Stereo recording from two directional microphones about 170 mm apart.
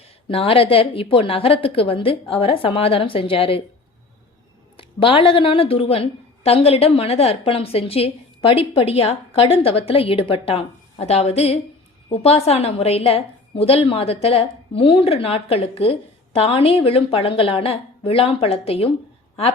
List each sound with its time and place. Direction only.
0.3 s a woman's voice: 35° left (ahead or behind)
4.8 s a woman's voice: 30° left (ahead or behind)